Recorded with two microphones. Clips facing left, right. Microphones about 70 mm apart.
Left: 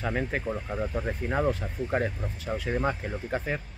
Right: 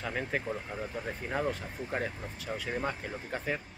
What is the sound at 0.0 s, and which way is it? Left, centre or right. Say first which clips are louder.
Speech: left 4 dB; centre.